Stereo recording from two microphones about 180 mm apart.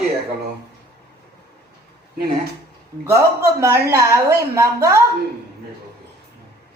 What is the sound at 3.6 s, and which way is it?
A woman's voice, 15° right (ahead or behind).